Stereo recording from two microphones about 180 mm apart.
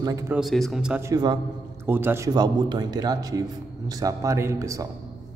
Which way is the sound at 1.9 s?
10° right (ahead or behind).